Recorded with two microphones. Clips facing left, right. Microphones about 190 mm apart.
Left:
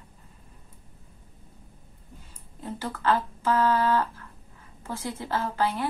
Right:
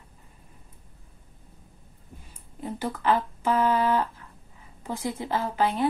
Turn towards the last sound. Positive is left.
turn(degrees=-15)  # may be behind; listen again after turning